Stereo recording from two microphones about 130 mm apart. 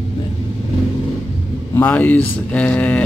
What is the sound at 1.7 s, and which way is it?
Speech, 15° left (ahead or behind).